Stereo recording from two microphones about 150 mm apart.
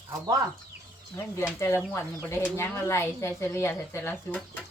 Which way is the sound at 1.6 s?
20° left (ahead or behind).